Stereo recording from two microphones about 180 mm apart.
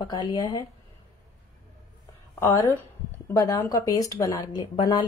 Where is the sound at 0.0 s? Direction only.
25° left (ahead or behind).